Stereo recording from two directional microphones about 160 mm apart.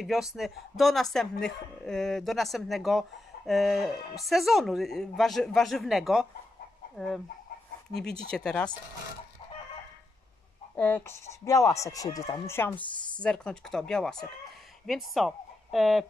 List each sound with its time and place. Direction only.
0.0 s speech: centre (ahead or behind)
8.3 s speech: 5° left (ahead or behind)
10.8 s speech: 15° left (ahead or behind)